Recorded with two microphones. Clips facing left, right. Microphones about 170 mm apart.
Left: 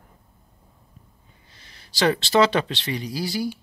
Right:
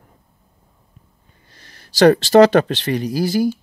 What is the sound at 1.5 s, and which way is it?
Speech, 45° right (ahead or behind).